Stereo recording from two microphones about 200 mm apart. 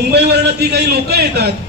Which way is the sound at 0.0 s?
55° right (ahead or behind).